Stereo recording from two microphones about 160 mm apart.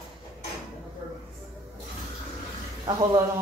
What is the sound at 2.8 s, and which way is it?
Speech, 20° right (ahead or behind).